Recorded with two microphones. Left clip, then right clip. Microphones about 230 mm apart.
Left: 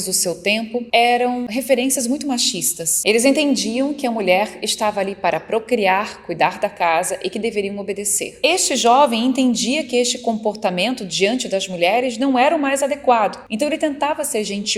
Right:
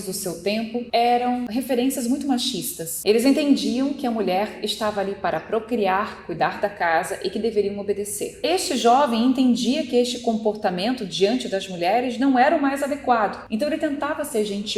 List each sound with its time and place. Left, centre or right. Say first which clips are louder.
0.1 s a woman's voice: left 6 dB; left